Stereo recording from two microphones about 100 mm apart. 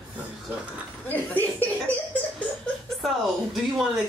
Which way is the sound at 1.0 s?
15° left (ahead or behind).